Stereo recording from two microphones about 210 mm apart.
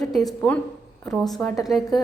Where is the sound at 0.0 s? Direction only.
Centre (ahead or behind).